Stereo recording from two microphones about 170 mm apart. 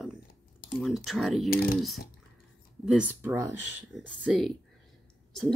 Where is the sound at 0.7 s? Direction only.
Centre (ahead or behind).